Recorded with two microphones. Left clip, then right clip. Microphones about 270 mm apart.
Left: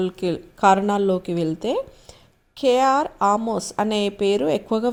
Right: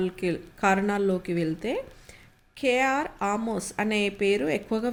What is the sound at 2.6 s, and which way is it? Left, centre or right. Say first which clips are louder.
A woman's voice: left 7 dB; centre.